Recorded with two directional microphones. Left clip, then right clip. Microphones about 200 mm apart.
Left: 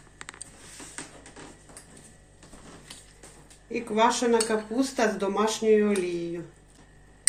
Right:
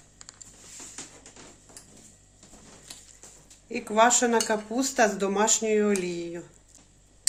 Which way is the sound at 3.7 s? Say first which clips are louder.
Right 2 dB; 50° right (ahead or behind).